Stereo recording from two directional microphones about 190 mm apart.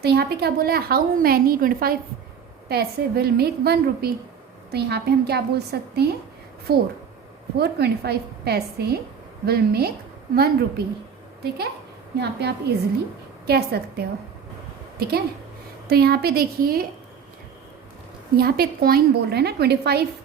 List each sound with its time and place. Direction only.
0.0 s a woman's voice: 55° right (ahead or behind)
18.3 s a woman's voice: 55° right (ahead or behind)